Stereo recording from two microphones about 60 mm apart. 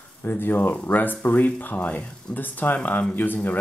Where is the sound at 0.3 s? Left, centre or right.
Left.